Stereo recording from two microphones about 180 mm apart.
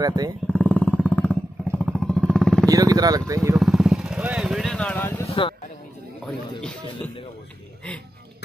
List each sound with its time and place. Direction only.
0.0 s speech: 20° right (ahead or behind)
0.5 s motorcycle: 10° left (ahead or behind)
2.7 s speech: 20° right (ahead or behind)
3.5 s speech: centre (ahead or behind)